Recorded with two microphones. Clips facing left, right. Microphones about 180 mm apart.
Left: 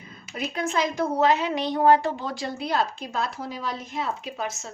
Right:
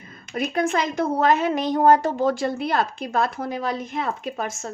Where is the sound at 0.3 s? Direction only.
55° right (ahead or behind).